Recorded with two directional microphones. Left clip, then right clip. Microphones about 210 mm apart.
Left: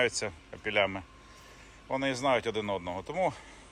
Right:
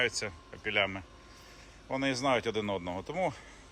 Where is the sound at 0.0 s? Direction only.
Centre (ahead or behind).